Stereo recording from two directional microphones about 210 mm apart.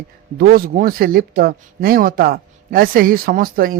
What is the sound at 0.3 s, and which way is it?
Speech, 45° right (ahead or behind).